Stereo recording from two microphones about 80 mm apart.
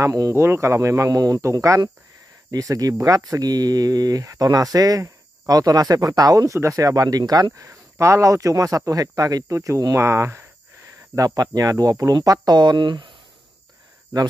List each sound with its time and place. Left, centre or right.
0.0 s speech: right
7.5 s speech: right
11.1 s speech: right
14.1 s speech: right